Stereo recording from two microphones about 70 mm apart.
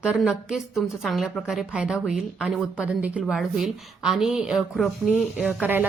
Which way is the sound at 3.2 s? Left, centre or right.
Centre.